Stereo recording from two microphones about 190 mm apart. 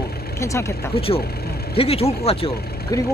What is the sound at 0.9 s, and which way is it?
Speech, 30° left (ahead or behind).